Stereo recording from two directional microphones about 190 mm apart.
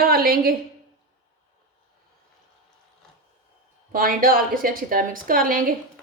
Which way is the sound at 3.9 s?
50° right (ahead or behind).